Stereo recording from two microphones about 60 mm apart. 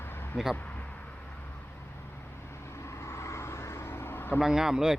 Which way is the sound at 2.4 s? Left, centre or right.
Left.